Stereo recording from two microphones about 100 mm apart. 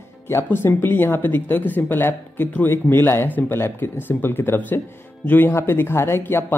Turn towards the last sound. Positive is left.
turn(degrees=25)  # may be behind; listen again after turning